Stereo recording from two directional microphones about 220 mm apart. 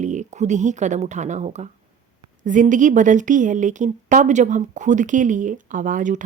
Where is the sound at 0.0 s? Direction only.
35° right (ahead or behind).